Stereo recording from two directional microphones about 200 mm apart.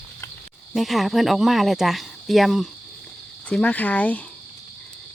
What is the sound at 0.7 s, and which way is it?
Speech, centre (ahead or behind).